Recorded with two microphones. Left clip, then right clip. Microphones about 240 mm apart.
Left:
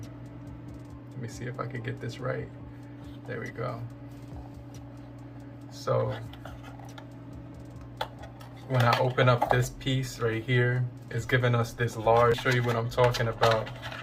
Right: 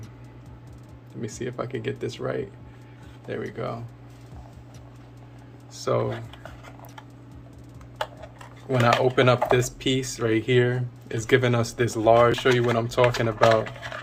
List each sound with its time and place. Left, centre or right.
1.2 s speech: right
5.7 s a sound: right
8.7 s speech: right